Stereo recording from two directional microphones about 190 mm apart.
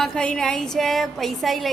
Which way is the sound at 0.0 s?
5° left (ahead or behind).